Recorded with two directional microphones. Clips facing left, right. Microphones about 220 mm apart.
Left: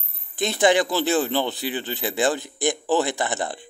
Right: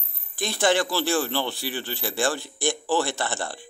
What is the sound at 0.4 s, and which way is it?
A man's voice, 20° left (ahead or behind).